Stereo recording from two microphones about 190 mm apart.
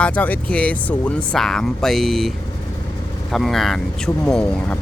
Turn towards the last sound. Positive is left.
turn(degrees=5)  # may be behind; listen again after turning